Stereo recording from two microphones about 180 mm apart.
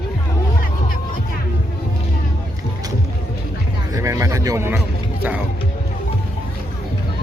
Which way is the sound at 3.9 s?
15° right (ahead or behind).